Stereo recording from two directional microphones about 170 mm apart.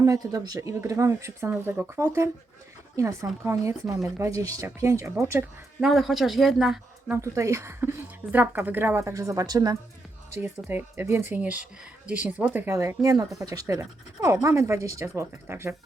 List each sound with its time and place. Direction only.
0.0 s a woman's voice: 20° right (ahead or behind)
5.8 s speech: centre (ahead or behind)
7.2 s speech: 15° right (ahead or behind)